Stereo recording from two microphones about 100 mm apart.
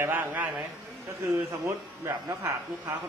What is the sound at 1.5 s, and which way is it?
Speech, 25° right (ahead or behind).